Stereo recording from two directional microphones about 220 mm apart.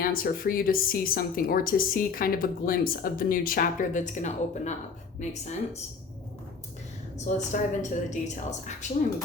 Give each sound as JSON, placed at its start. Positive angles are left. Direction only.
{"t": 0.0, "sound": "a woman's voice", "side_deg": 40}
{"t": 7.3, "sound": "a woman's voice", "side_deg": 30}